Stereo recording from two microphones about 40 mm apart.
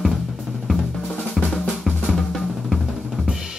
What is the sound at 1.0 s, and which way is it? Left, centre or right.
Drum, left.